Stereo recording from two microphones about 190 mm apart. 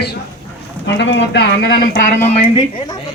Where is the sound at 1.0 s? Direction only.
65° left (ahead or behind).